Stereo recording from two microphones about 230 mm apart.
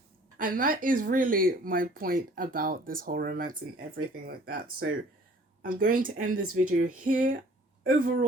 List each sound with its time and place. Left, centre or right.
0.3 s speech: right
5.6 s speech: right
6.3 s speech: right
6.6 s speech: right